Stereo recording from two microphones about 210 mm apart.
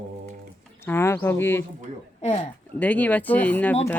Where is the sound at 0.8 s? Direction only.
10° left (ahead or behind).